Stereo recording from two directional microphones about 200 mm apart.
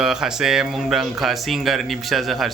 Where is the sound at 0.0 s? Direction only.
Centre (ahead or behind).